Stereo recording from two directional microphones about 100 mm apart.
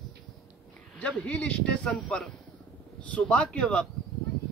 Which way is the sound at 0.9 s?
10° left (ahead or behind).